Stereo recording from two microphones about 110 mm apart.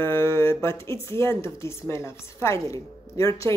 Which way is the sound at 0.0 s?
25° left (ahead or behind).